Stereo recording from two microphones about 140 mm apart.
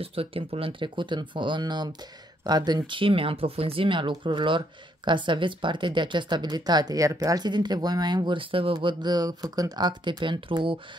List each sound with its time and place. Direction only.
0.0 s speech: 40° right (ahead or behind)